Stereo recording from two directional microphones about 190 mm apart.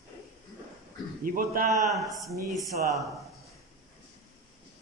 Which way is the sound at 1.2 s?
45° right (ahead or behind).